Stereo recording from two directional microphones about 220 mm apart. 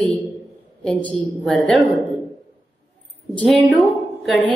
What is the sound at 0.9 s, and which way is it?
Speech, 20° left (ahead or behind).